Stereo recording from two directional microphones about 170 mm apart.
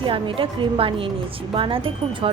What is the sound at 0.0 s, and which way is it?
A woman's voice, 30° right (ahead or behind).